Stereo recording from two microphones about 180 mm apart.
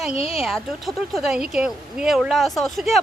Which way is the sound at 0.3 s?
Centre (ahead or behind).